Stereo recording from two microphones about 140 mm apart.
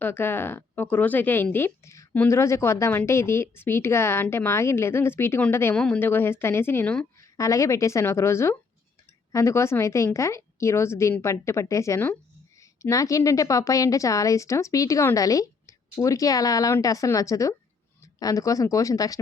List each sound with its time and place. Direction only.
0.0 s a woman's voice: 15° left (ahead or behind)